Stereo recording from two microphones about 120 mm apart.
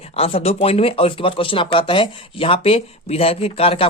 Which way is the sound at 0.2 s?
55° left (ahead or behind).